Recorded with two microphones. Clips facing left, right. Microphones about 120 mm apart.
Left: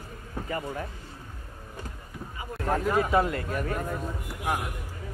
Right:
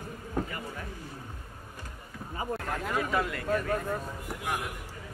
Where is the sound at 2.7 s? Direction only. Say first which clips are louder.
Left 8 dB; 40° left (ahead or behind).